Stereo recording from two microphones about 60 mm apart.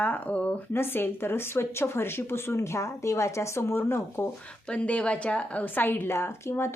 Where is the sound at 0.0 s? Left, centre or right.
Left.